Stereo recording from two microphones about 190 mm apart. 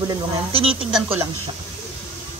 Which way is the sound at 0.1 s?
30° right (ahead or behind).